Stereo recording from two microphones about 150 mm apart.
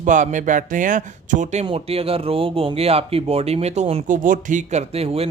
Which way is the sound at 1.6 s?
40° right (ahead or behind).